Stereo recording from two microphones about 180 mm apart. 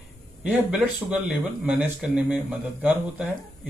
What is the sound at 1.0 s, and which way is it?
Speech, 10° right (ahead or behind).